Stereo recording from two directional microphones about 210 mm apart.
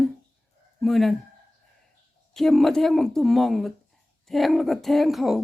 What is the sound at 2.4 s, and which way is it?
Speech, centre (ahead or behind).